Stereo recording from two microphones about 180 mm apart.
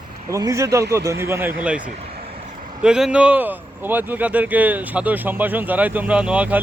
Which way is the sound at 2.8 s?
5° right (ahead or behind).